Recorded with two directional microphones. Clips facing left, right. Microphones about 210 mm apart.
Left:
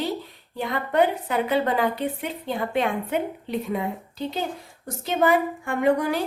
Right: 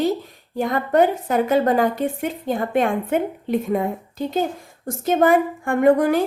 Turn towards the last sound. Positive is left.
turn(degrees=-50)  # may be behind; listen again after turning